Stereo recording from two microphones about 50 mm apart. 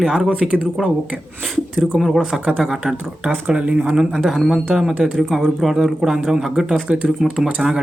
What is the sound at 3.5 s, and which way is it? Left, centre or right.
Speech, right.